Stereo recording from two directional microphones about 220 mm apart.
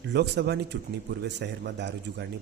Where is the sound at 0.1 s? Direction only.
50° right (ahead or behind).